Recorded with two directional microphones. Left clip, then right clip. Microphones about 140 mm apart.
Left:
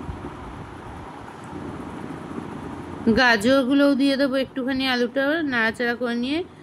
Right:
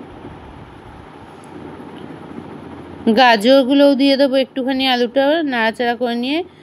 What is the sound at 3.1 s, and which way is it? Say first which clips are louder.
Speech: right 7 dB; 30° right (ahead or behind).